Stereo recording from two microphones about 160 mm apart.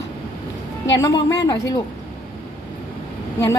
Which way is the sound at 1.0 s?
25° left (ahead or behind).